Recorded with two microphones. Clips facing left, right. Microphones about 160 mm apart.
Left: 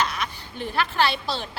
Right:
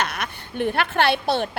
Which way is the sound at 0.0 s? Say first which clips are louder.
Even; 60° right (ahead or behind).